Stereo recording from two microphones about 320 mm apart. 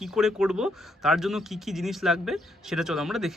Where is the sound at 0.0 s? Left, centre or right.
Centre.